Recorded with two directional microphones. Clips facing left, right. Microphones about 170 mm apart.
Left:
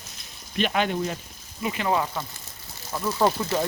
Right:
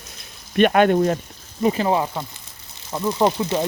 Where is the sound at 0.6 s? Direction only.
55° right (ahead or behind).